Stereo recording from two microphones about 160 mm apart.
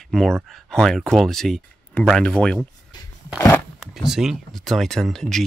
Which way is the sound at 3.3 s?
15° left (ahead or behind).